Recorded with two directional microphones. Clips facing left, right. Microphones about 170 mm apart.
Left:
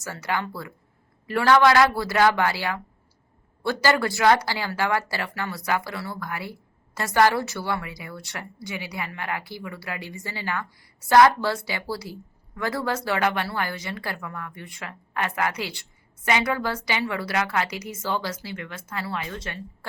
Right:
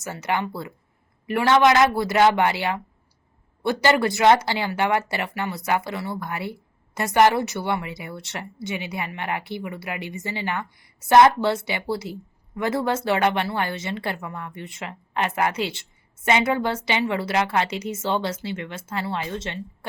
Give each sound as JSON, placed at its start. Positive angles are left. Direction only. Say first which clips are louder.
{"t": 0.0, "sound": "a woman's voice", "louder": "right 3 dB", "side_deg": -20}